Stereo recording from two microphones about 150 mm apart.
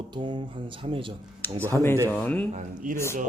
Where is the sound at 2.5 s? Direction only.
60° right (ahead or behind).